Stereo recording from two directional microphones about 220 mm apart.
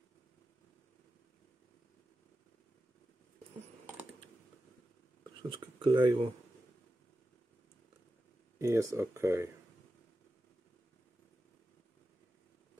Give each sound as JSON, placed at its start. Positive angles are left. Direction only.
{"t": 5.5, "sound": "speech", "side_deg": -20}
{"t": 8.5, "sound": "speech", "side_deg": -15}